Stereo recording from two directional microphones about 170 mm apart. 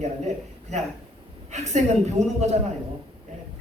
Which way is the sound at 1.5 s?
40° right (ahead or behind).